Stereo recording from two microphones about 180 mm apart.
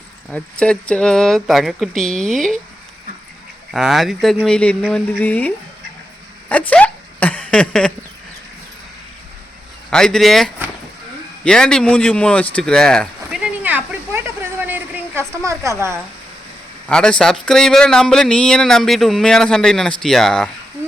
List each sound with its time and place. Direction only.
0.3 s speech: 5° left (ahead or behind)
3.7 s speech: centre (ahead or behind)
6.5 s a sound: 10° left (ahead or behind)
9.9 s speech: 5° left (ahead or behind)
14.6 s a sound: 10° right (ahead or behind)
15.6 s speech: 15° right (ahead or behind)
16.9 s speech: 5° left (ahead or behind)